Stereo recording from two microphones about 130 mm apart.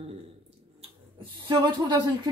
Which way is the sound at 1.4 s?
30° right (ahead or behind).